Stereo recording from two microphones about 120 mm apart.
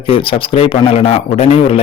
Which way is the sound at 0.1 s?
50° left (ahead or behind).